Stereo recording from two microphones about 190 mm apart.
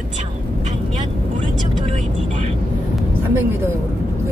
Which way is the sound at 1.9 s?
40° right (ahead or behind).